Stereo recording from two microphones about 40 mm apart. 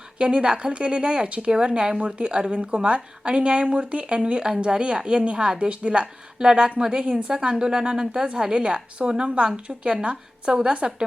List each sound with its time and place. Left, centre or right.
0.2 s a woman's voice: right